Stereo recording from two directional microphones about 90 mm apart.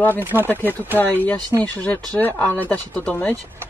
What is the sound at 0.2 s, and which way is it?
Speech, 20° right (ahead or behind).